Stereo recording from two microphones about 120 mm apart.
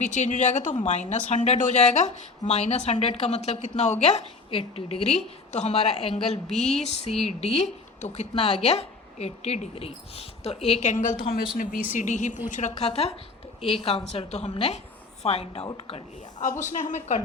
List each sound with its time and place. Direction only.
0.0 s speech: 80° left
0.8 s a woman's voice: 75° left (ahead or behind)
6.5 s a sound: 5° left (ahead or behind)
6.8 s a woman's voice: 60° left (ahead or behind)
10.7 s a woman's voice: 80° left; by 16.0 s 55° left (ahead or behind)
16.7 s speech: 90° left